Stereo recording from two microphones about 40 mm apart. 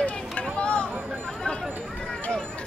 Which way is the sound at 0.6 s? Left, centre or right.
Left.